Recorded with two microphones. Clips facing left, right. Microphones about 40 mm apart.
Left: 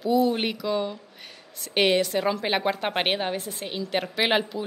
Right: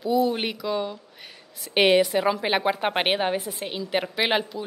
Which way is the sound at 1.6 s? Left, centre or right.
Centre.